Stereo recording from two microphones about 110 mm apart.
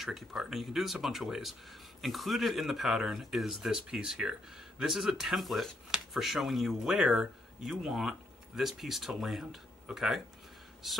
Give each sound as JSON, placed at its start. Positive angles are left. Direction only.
{"t": 0.0, "sound": "speech", "side_deg": 0}